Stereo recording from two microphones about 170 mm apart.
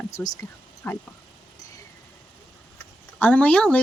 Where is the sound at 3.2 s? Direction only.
5° left (ahead or behind).